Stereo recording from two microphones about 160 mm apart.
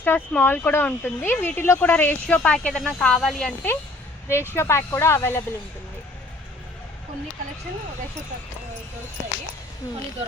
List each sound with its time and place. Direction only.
0.0 s speech: 10° left (ahead or behind)